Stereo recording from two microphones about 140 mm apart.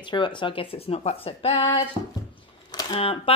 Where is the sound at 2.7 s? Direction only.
30° left (ahead or behind).